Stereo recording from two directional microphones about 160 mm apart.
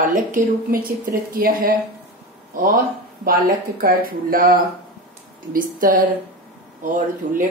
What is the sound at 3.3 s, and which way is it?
Speech, 65° right (ahead or behind).